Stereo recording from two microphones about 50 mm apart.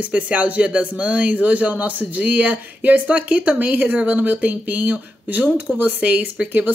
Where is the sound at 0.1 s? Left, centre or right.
Right.